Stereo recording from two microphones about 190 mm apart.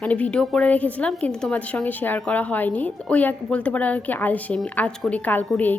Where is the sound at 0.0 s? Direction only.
5° left (ahead or behind).